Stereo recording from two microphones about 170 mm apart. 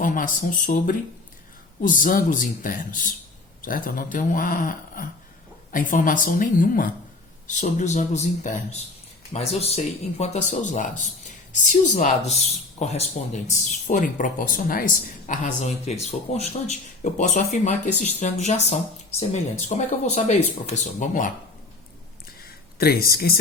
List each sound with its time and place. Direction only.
0.0 s speech: 50° left (ahead or behind)
22.8 s speech: 65° left (ahead or behind)